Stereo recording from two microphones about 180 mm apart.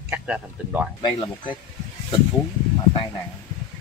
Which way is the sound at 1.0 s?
25° left (ahead or behind).